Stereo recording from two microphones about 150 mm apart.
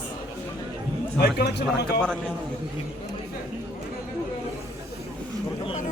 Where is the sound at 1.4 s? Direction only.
90° left.